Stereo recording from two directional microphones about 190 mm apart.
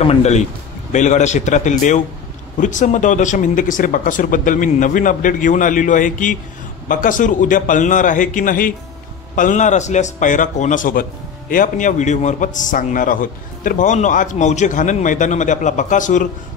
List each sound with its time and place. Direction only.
0.0 s a man's voice: 35° left (ahead or behind)